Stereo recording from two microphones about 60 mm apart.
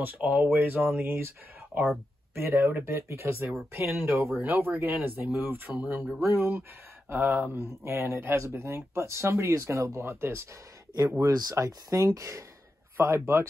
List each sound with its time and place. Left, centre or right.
0.0 s speech: right
2.3 s speech: right
7.5 s speech: right
9.5 s speech: right
11.1 s speech: right
11.5 s speech: right
12.9 s speech: right